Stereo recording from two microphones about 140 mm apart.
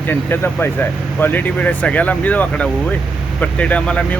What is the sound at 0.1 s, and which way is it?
Speech, 15° left (ahead or behind).